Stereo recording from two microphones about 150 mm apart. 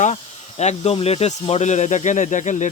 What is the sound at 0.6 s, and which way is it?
Speech, 45° left (ahead or behind).